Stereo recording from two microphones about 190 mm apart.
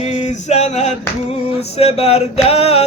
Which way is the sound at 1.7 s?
30° left (ahead or behind).